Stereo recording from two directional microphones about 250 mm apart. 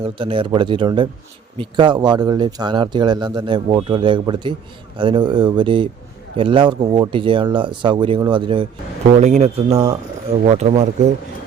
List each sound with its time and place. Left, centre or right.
0.0 s speech: right
9.7 s speech: centre
10.4 s speech: right